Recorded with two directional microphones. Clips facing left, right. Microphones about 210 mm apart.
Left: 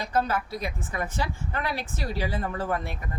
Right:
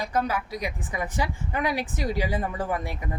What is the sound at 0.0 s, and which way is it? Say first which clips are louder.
A woman's voice: even; 15° right (ahead or behind).